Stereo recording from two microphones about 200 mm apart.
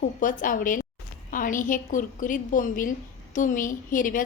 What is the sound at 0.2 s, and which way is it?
A woman's voice, 40° left (ahead or behind).